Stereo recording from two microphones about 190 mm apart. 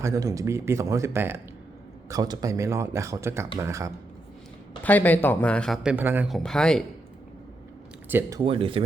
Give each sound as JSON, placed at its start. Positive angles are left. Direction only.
{"t": 0.0, "sound": "speech", "side_deg": -15}
{"t": 4.8, "sound": "speech", "side_deg": 10}
{"t": 8.4, "sound": "speech", "side_deg": -30}